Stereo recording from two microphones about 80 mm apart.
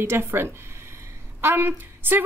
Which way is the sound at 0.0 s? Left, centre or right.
Right.